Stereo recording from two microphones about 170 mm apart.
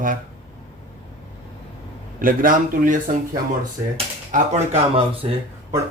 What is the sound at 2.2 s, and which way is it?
Speech, 55° right (ahead or behind).